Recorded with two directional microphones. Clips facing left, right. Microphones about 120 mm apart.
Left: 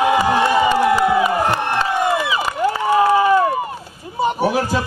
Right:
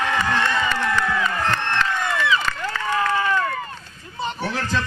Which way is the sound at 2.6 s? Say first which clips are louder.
Left 8 dB; 20° left (ahead or behind).